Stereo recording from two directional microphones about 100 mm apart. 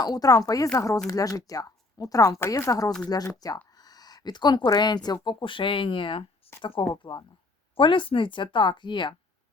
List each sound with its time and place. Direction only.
0.0 s speech: 40° left (ahead or behind)
3.7 s a sound: 40° left (ahead or behind)
5.0 s speech: 45° left (ahead or behind)